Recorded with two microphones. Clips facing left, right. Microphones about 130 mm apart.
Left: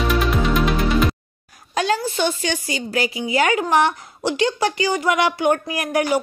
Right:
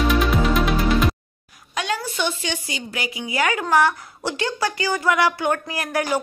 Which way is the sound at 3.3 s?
25° left (ahead or behind).